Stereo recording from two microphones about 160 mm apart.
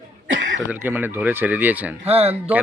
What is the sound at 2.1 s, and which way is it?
Speech, 40° right (ahead or behind).